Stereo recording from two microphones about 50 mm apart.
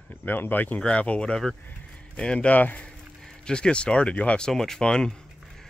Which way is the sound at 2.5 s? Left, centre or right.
Left.